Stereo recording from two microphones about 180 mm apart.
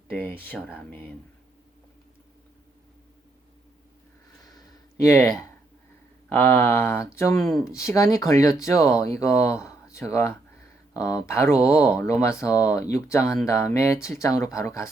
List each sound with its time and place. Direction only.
0.1 s speech: 10° left (ahead or behind)
4.4 s a sound: 20° left (ahead or behind)
6.2 s speech: 10° left (ahead or behind)